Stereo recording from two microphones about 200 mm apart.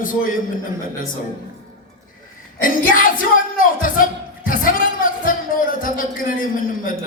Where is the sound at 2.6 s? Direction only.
45° left (ahead or behind).